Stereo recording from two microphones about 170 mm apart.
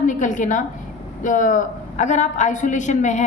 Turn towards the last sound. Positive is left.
turn(degrees=45)  # may be behind; listen again after turning